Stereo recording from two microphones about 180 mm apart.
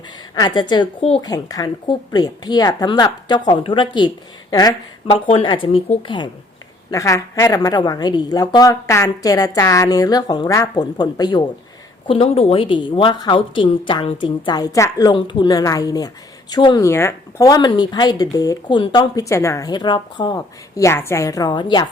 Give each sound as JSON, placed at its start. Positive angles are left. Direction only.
{"t": 0.3, "sound": "a woman's voice", "side_deg": 25}